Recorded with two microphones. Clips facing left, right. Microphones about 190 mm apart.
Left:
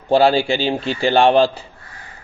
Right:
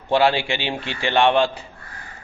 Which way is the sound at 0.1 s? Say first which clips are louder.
Left 4 dB; 35° left (ahead or behind).